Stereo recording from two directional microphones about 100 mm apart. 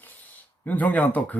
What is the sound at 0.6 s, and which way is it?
Speech, 15° left (ahead or behind).